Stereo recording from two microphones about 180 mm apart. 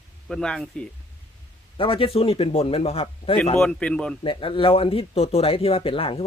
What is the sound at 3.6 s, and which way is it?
Speech, 5° left (ahead or behind).